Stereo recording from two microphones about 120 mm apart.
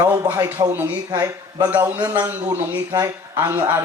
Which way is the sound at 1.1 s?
30° right (ahead or behind).